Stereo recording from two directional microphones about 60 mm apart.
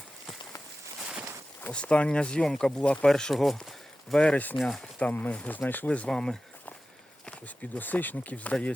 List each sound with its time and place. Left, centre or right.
1.7 s speech: centre
4.8 s speech: left
6.1 s speech: centre
7.3 s speech: left